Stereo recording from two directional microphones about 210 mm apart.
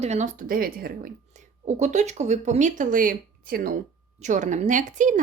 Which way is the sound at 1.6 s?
35° right (ahead or behind).